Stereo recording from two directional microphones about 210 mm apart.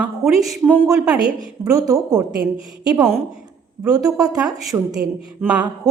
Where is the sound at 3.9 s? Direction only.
15° right (ahead or behind).